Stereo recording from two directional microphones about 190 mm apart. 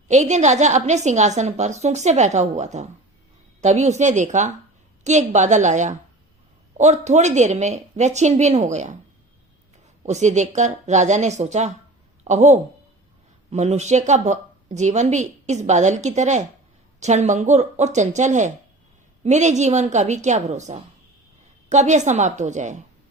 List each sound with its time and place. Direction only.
0.1 s speech: 40° right (ahead or behind)
10.0 s speech: 40° right (ahead or behind)